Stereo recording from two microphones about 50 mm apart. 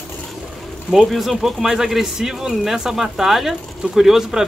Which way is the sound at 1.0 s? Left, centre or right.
Centre.